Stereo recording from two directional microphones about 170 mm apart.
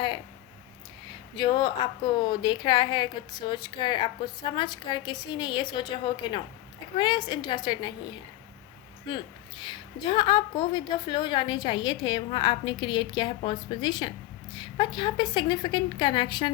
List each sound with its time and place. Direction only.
1.4 s a woman's voice: 25° left (ahead or behind)
6.9 s a woman's voice: 25° left (ahead or behind)
9.0 s a woman's voice: 25° left (ahead or behind)